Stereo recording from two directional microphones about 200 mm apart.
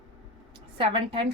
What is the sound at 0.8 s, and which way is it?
Speech, 25° right (ahead or behind).